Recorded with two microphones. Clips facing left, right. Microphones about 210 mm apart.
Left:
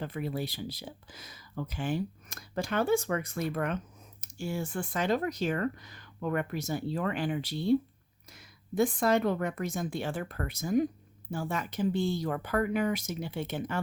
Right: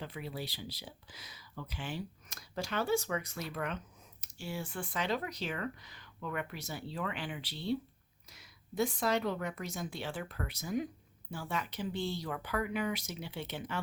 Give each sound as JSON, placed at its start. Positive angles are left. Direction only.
{"t": 0.0, "sound": "speech", "side_deg": 50}